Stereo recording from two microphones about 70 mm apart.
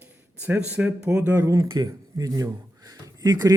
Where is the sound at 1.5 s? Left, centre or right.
Right.